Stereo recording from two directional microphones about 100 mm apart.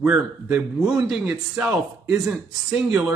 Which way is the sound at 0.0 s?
15° right (ahead or behind).